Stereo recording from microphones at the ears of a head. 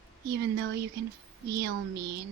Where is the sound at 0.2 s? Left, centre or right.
Right.